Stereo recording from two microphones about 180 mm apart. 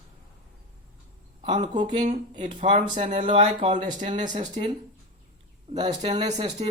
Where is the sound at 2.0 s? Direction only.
40° right (ahead or behind).